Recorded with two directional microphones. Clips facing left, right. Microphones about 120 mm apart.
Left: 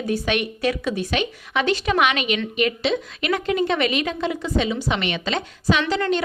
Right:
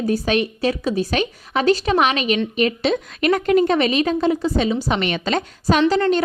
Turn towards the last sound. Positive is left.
turn(degrees=-40)  # may be behind; listen again after turning